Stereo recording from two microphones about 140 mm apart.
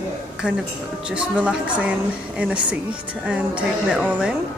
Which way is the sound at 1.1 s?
5° right (ahead or behind).